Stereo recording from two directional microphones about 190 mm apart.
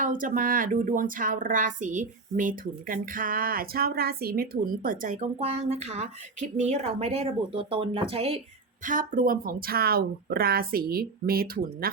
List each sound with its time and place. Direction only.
0.0 s speech: 45° right (ahead or behind)
8.8 s speech: 45° right (ahead or behind)